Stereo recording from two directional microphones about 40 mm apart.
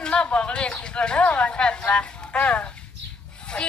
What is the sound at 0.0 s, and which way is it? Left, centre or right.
Speech, left.